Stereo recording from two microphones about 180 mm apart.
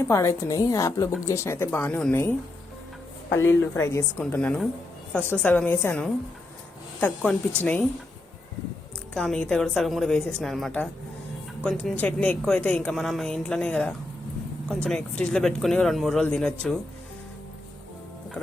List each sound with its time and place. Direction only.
0.1 s a woman's voice: 15° left (ahead or behind)
3.6 s a woman's voice: 15° left (ahead or behind)
9.1 s a woman's voice: 5° left (ahead or behind)